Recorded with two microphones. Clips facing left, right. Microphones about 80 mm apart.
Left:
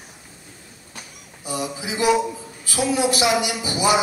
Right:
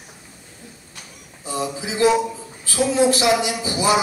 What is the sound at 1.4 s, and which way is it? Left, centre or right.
A man's voice, centre.